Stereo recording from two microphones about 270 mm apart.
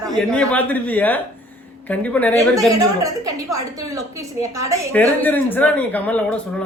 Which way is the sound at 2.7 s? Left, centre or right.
Centre.